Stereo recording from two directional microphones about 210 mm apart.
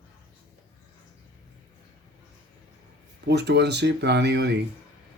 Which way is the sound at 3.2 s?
55° right (ahead or behind).